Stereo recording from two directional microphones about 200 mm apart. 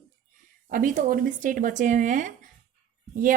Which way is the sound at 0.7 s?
40° right (ahead or behind).